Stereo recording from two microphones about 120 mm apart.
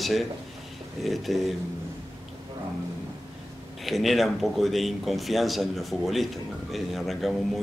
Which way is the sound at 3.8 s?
Centre (ahead or behind).